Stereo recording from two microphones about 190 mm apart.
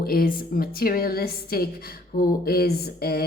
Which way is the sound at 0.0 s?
50° left (ahead or behind).